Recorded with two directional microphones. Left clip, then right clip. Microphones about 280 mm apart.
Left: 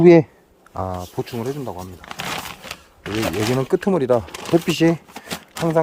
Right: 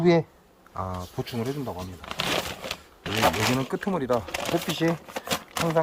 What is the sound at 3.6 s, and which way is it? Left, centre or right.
Speech, left.